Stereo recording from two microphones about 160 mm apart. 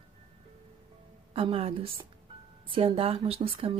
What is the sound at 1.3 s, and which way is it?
Speech, 35° right (ahead or behind).